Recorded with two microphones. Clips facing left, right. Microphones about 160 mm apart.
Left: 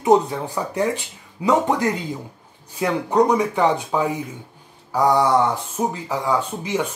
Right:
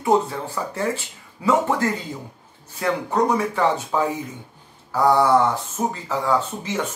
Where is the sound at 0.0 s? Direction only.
20° left (ahead or behind).